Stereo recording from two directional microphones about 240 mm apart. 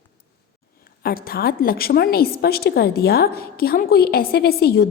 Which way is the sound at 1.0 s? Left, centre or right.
Left.